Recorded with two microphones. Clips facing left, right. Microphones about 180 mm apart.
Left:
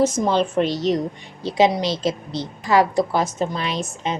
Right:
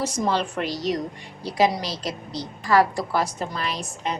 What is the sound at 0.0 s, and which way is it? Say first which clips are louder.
A woman's voice: left 6 dB; 20° left (ahead or behind).